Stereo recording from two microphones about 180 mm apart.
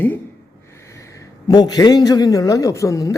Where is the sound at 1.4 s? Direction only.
20° left (ahead or behind).